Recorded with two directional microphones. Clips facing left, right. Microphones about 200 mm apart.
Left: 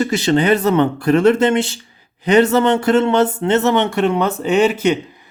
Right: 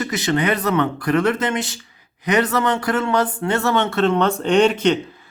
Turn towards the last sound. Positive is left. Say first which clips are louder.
# left 1 dB
turn(degrees=10)  # may be behind; listen again after turning